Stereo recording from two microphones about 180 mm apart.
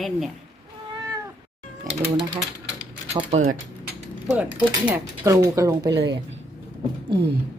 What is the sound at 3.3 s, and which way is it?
Speech, 40° right (ahead or behind).